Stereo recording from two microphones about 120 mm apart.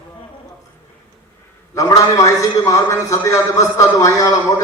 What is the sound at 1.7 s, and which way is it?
A man's voice, 30° left (ahead or behind).